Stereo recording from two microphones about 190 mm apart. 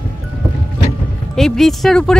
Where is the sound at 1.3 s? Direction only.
Centre (ahead or behind).